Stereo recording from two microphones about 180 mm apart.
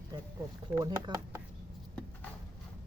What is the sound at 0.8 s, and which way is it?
Speech, 20° right (ahead or behind).